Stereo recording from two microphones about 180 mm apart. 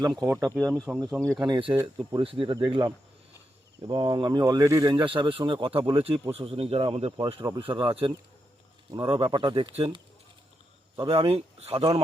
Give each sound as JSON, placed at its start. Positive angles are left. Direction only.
{"t": 0.0, "sound": "speech", "side_deg": -20}
{"t": 0.4, "sound": "speech", "side_deg": -5}
{"t": 1.5, "sound": "speech", "side_deg": -30}
{"t": 1.7, "sound": "speech", "side_deg": -15}